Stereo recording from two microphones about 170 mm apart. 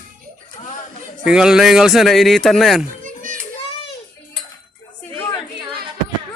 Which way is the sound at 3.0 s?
50° right (ahead or behind).